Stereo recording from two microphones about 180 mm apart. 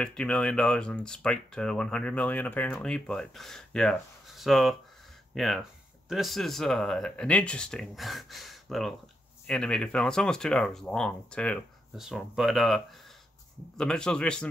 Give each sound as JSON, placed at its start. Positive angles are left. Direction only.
{"t": 0.0, "sound": "speech", "side_deg": 5}